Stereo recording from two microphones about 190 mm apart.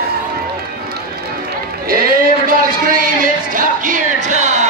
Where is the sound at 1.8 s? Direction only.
50° right (ahead or behind).